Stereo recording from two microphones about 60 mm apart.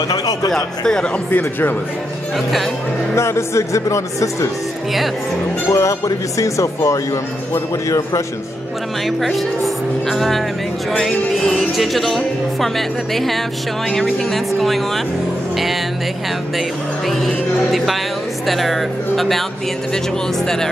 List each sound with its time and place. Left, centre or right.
0.5 s a man's voice: centre
1.3 s a man's voice: left
2.3 s speech: centre
3.2 s a man's voice: left
5.7 s a man's voice: left
9.0 s speech: centre
15.5 s vehicle: centre
17.1 s speech: centre